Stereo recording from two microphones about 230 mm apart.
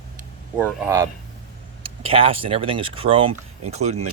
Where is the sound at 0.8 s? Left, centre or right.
Centre.